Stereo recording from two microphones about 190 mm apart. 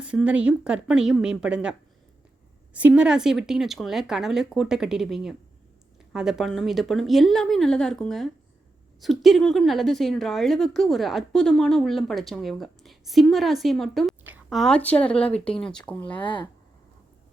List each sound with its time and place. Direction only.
0.0 s a woman's voice: 5° right (ahead or behind)
2.7 s a woman's voice: 5° right (ahead or behind)
16.2 s speech: 25° left (ahead or behind)